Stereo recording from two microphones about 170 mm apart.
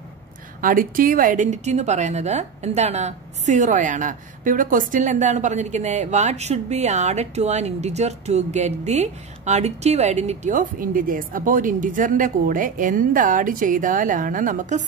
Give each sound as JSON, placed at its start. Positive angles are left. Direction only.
{"t": 0.6, "sound": "a woman's voice", "side_deg": -55}